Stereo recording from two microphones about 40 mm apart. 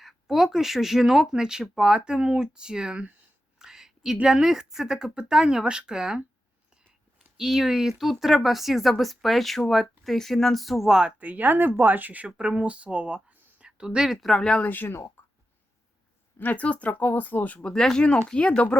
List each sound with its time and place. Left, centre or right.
0.0 s speech: centre
3.6 s a sound: centre
4.3 s speech: centre
7.3 s speech: centre
10.8 s speech: centre
11.2 s speech: right
12.4 s speech: right
14.1 s speech: centre
14.6 s speech: left
16.4 s speech: left
16.9 s speech: left
17.6 s speech: left